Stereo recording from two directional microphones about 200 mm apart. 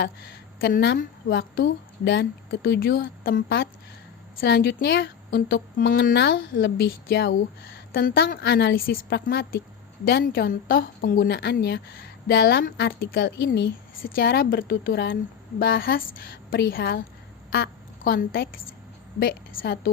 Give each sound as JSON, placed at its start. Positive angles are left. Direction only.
{"t": 0.6, "sound": "a woman's voice", "side_deg": 50}
{"t": 6.1, "sound": "a woman's voice", "side_deg": 55}
{"t": 19.6, "sound": "a woman's voice", "side_deg": 45}